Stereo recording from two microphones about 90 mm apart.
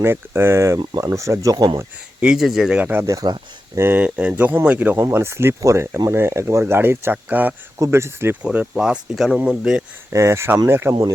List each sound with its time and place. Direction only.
0.0 s speech: 25° right (ahead or behind); by 1.8 s 45° right (ahead or behind)
2.2 s speech: 5° right (ahead or behind)
2.9 s speech: 25° right (ahead or behind)
4.9 s speech: 30° right (ahead or behind)
7.8 s speech: 30° right (ahead or behind)
8.4 s speech: 10° right (ahead or behind)
10.1 s speech: 35° right (ahead or behind)